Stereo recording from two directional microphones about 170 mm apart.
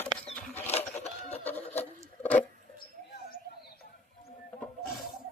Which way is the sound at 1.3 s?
10° left (ahead or behind).